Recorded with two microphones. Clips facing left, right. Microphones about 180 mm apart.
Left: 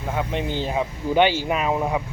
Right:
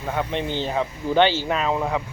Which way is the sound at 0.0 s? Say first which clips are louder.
Even; 5° left (ahead or behind).